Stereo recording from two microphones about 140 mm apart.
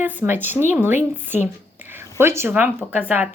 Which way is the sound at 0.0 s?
15° right (ahead or behind).